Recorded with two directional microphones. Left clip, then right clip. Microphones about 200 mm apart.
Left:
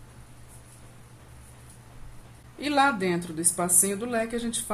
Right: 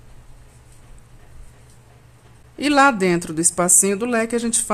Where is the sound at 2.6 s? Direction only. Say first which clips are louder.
Right 8 dB; 45° right (ahead or behind).